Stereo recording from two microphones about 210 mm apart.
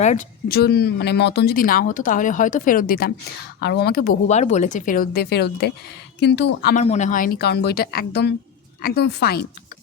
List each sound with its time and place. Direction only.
0.0 s speech: 35° left (ahead or behind)
4.3 s speech: 35° left (ahead or behind); by 6.7 s 50° left (ahead or behind)
6.7 s speech: 35° left (ahead or behind); by 9.5 s 50° left (ahead or behind)